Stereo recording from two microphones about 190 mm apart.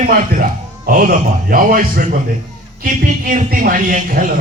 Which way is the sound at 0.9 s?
50° right (ahead or behind).